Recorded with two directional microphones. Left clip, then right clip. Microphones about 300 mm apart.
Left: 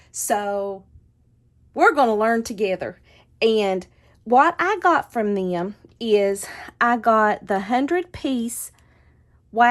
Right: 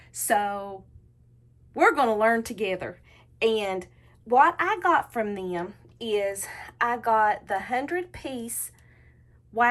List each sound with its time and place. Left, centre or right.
0.0 s a woman's voice: centre